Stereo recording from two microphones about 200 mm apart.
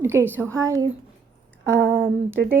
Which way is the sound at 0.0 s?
10° right (ahead or behind).